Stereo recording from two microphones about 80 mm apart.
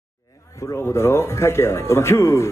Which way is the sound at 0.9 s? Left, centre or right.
Left.